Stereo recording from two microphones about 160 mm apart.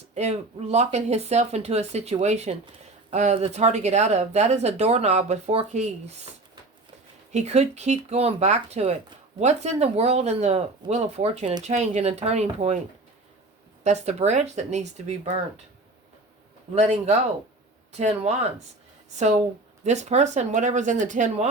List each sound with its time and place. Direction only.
0.1 s speech: 45° right (ahead or behind)
7.3 s speech: 45° right (ahead or behind)
13.8 s speech: 45° right (ahead or behind)
16.7 s speech: 45° right (ahead or behind)